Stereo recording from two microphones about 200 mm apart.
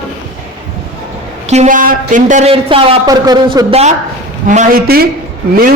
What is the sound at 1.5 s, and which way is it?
A man's voice, 35° right (ahead or behind).